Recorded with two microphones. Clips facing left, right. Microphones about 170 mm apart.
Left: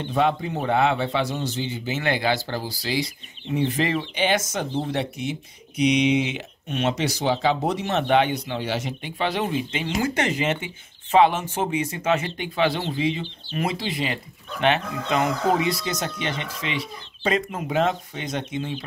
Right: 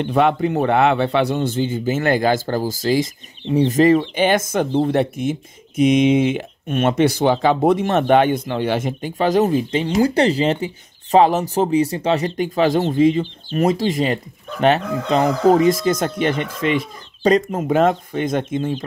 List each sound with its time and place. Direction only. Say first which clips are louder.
0.0 s speech: right 6 dB; 65° right (ahead or behind); by 18.9 s 45° right (ahead or behind)